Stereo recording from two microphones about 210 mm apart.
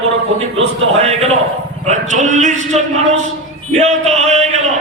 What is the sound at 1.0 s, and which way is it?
A man's voice, 30° right (ahead or behind).